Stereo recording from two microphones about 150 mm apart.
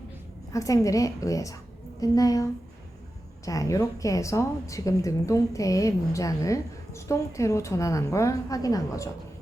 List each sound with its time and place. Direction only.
0.5 s a woman's voice: 20° left (ahead or behind)